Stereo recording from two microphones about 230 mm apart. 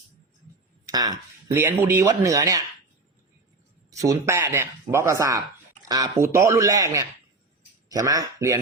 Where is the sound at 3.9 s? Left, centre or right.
Centre.